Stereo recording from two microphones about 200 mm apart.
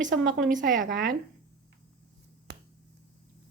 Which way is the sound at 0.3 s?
45° right (ahead or behind).